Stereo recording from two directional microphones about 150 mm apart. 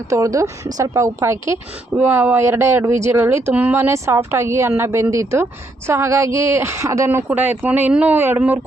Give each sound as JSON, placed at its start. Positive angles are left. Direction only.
{"t": 0.1, "sound": "a woman's voice", "side_deg": -20}